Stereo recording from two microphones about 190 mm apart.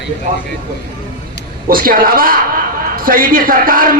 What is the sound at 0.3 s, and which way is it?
Speech, 45° right (ahead or behind).